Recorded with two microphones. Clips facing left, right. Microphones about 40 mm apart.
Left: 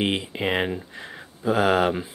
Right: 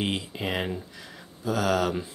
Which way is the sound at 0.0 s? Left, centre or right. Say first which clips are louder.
Left 5 dB; left.